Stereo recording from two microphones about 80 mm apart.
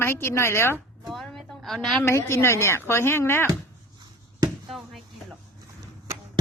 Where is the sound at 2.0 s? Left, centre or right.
Left.